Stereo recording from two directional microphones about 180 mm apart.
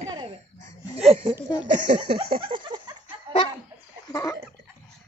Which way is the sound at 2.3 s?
55° right (ahead or behind).